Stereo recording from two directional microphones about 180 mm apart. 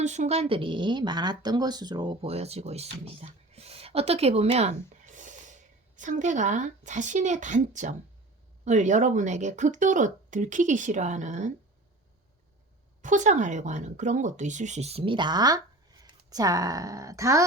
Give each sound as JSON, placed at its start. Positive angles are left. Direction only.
{"t": 0.0, "sound": "speech", "side_deg": -40}
{"t": 13.0, "sound": "speech", "side_deg": -45}